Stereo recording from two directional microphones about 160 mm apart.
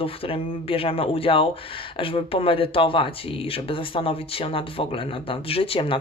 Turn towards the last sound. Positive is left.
turn(degrees=35)  # may be behind; listen again after turning